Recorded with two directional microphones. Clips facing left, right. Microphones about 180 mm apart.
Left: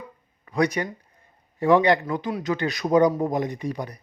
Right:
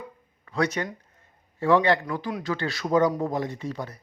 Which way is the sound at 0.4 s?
15° left (ahead or behind).